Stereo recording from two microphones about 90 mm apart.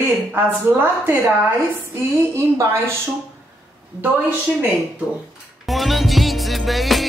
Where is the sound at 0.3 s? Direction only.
20° right (ahead or behind).